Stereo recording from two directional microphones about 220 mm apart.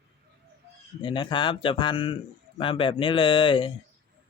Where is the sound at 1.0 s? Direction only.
20° left (ahead or behind).